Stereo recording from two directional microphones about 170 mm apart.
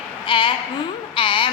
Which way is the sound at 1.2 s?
30° left (ahead or behind).